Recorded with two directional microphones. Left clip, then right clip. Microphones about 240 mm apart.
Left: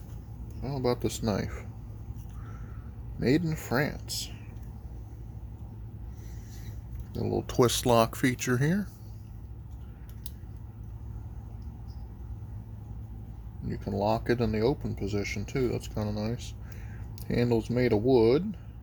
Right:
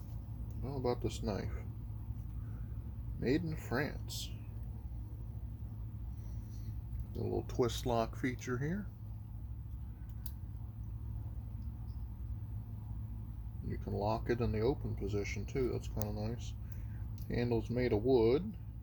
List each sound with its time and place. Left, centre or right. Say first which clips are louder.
0.6 s speech: left 8 dB; left
3.2 s speech: left 8 dB; left
7.2 s speech: left 9 dB; left
13.7 s speech: left 8 dB; left